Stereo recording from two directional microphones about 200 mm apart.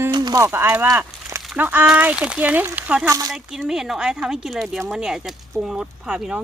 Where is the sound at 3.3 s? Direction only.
Centre (ahead or behind).